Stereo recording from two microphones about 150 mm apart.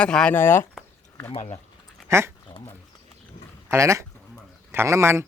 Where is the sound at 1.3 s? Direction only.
40° left (ahead or behind).